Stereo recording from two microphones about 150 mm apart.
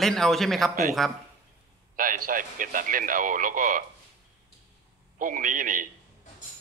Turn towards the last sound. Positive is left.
turn(degrees=-65)  # may be behind; listen again after turning